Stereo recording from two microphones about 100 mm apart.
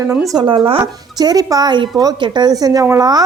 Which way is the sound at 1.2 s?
40° right (ahead or behind).